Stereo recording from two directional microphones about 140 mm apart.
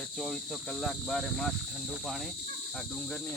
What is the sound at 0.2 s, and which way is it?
Speech, centre (ahead or behind).